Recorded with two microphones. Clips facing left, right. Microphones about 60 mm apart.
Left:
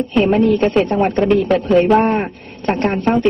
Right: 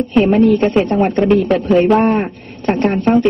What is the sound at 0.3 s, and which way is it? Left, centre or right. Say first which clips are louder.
Speech: right 1 dB; centre.